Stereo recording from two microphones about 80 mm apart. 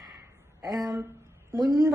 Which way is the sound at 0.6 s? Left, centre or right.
Right.